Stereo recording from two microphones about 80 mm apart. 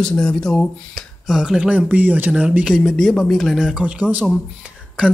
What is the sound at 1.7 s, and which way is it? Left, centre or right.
Speech, centre.